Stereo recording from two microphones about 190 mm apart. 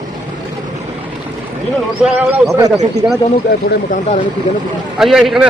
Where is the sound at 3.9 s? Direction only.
35° left (ahead or behind).